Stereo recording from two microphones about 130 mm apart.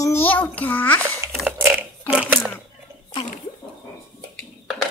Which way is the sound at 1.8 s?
10° right (ahead or behind).